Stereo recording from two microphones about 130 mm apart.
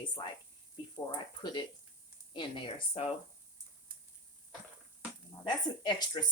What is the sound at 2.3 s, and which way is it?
Speech, 40° left (ahead or behind).